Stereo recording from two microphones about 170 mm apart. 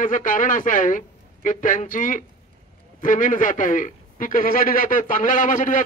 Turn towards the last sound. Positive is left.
turn(degrees=50)  # may be behind; listen again after turning